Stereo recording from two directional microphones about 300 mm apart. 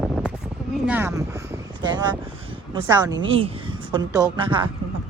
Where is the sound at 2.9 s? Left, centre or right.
Centre.